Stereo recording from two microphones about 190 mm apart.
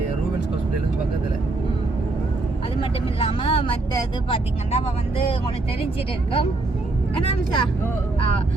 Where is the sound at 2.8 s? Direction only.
30° left (ahead or behind).